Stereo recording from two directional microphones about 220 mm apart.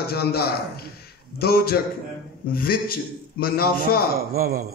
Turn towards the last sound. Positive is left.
turn(degrees=-45)  # may be behind; listen again after turning